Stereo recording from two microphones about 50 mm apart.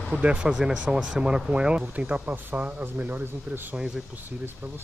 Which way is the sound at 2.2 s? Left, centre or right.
Right.